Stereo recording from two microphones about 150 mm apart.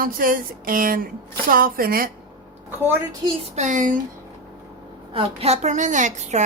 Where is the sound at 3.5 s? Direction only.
55° right (ahead or behind).